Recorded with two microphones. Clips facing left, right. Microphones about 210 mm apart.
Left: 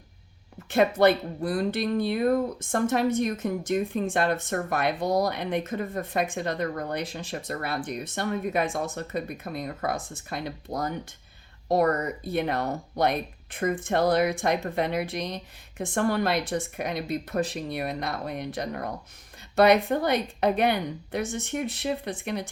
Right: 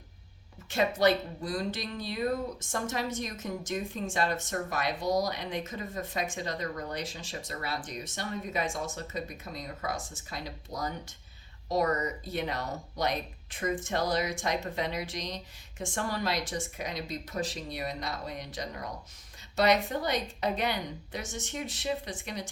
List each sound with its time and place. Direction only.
0.7 s speech: 55° left (ahead or behind)